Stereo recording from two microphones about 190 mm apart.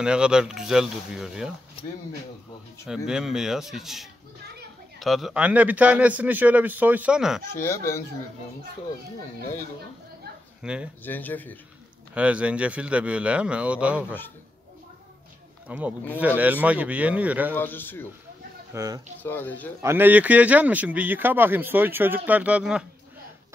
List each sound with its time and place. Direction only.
0.0 s speech: 5° right (ahead or behind)
3.1 s speech: 5° right (ahead or behind)
7.5 s speech: 15° left (ahead or behind)
10.6 s speech: 5° right (ahead or behind)
11.1 s speech: 10° left (ahead or behind)
12.1 s speech: 5° right (ahead or behind)
15.7 s speech: 5° right (ahead or behind)
17.6 s speech: 10° left (ahead or behind)
18.7 s speech: 15° right (ahead or behind)
19.2 s speech: 10° left (ahead or behind)
19.8 s speech: 10° right (ahead or behind)